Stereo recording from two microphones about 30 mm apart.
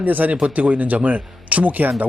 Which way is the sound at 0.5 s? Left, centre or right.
Right.